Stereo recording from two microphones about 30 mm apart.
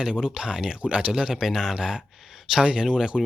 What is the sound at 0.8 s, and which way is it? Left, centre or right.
Speech, right.